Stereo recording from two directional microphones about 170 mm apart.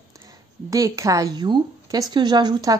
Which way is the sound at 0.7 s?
20° right (ahead or behind).